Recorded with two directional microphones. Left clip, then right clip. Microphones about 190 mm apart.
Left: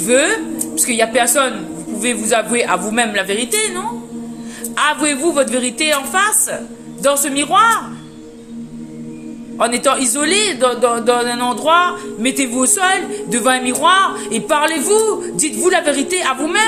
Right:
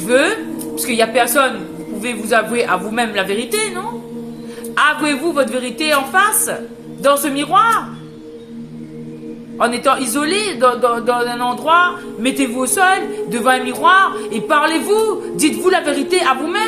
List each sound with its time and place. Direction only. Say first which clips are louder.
0.1 s a man's voice: even; 25° left (ahead or behind)
9.6 s a man's voice: even; 25° left (ahead or behind)